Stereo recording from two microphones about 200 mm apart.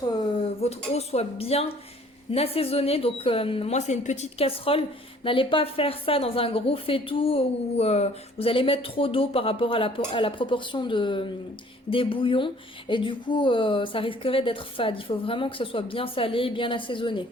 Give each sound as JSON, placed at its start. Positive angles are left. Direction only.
{"t": 0.6, "sound": "a woman's voice", "side_deg": 30}